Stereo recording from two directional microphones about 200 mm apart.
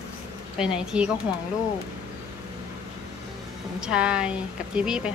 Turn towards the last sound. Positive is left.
turn(degrees=-5)  # may be behind; listen again after turning